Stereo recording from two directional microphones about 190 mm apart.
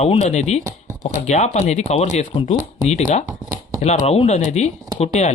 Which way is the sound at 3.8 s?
35° left (ahead or behind).